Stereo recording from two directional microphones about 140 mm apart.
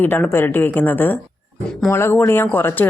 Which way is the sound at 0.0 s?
15° left (ahead or behind).